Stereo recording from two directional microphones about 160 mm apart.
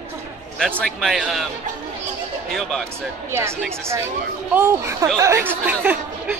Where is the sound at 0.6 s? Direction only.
5° left (ahead or behind).